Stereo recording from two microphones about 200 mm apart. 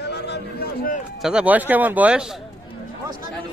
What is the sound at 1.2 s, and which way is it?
A man's voice, 5° right (ahead or behind).